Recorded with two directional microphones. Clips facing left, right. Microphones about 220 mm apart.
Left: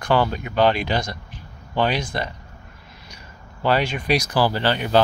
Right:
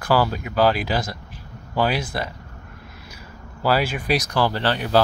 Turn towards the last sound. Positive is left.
turn(degrees=0)  # may be behind; listen again after turning